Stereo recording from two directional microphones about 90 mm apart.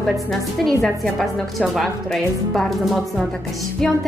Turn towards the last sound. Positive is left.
turn(degrees=5)  # may be behind; listen again after turning